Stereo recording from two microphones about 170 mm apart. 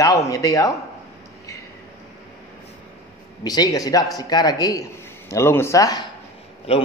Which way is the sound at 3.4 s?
20° left (ahead or behind).